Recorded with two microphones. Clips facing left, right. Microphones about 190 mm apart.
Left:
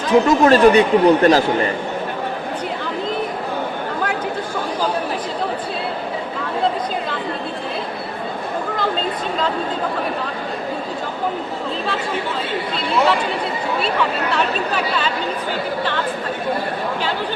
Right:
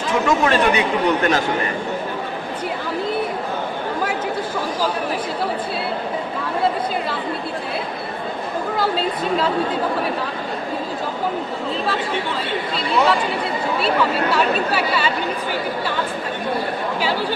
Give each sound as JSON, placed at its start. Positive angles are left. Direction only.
{"t": 0.1, "sound": "speech", "side_deg": 40}
{"t": 8.7, "sound": "speech", "side_deg": -5}
{"t": 13.8, "sound": "speech", "side_deg": -5}